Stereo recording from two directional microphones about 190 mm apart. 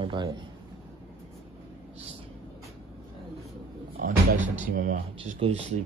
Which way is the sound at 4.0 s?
40° right (ahead or behind).